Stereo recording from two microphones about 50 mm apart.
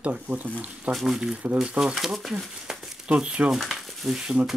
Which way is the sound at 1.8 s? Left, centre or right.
Centre.